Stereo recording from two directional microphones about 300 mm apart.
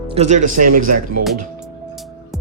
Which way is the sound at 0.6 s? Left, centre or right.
Right.